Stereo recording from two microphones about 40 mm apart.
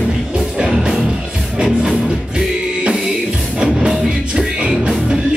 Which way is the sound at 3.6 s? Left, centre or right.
Right.